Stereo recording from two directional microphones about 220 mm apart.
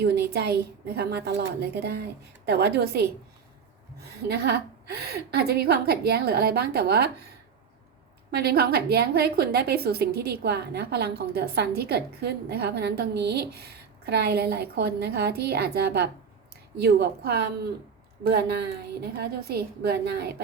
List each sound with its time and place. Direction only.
0.0 s a woman's voice: 45° right (ahead or behind)
8.3 s a woman's voice: 45° right (ahead or behind)